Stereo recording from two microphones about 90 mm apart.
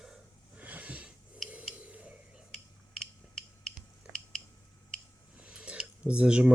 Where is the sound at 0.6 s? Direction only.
15° right (ahead or behind).